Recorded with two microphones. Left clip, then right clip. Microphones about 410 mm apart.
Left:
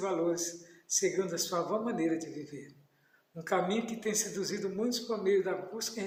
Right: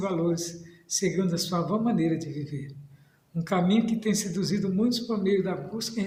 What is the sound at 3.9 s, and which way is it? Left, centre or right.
A man's voice, centre.